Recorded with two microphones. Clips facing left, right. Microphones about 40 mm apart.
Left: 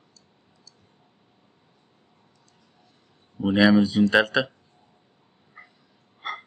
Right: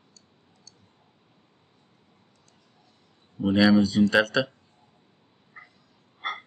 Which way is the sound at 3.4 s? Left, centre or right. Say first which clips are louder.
Left 1 dB; centre.